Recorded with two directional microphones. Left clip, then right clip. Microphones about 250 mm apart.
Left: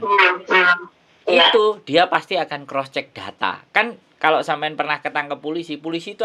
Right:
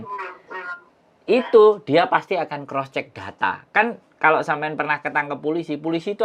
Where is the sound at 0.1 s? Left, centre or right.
Left.